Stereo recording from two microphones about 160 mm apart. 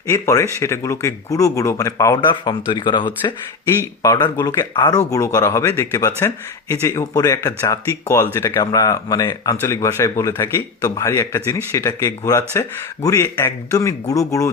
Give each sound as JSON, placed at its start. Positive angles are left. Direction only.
{"t": 0.1, "sound": "speech", "side_deg": 20}
{"t": 3.7, "sound": "speech", "side_deg": 20}